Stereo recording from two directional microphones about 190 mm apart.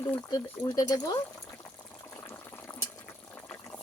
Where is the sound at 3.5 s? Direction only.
10° left (ahead or behind).